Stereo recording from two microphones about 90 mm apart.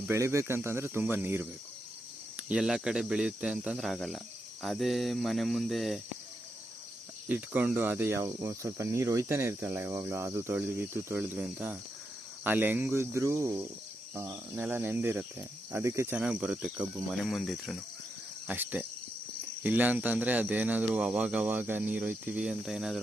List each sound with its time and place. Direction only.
0.1 s speech: 30° right (ahead or behind)
2.5 s speech: 10° right (ahead or behind)
3.8 s cricket: centre (ahead or behind)
7.3 s speech: 20° right (ahead or behind)
11.3 s speech: 15° right (ahead or behind); by 13.6 s 35° right (ahead or behind)
14.5 s speech: 15° right (ahead or behind)
16.1 s speech: 10° right (ahead or behind)
17.1 s cricket: centre (ahead or behind)
18.4 s speech: 20° right (ahead or behind)
22.4 s cricket: 5° right (ahead or behind)